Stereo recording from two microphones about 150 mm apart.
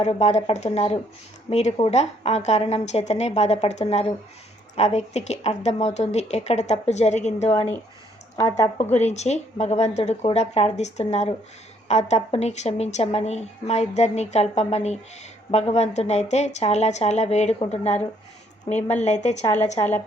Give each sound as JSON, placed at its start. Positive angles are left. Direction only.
{"t": 0.0, "sound": "a woman's voice", "side_deg": 45}
{"t": 8.4, "sound": "speech", "side_deg": 20}
{"t": 8.9, "sound": "a woman's voice", "side_deg": 50}